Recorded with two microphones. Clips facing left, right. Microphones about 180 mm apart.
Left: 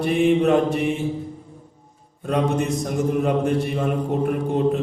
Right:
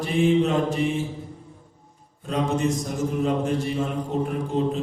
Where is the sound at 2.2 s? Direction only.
60° left (ahead or behind).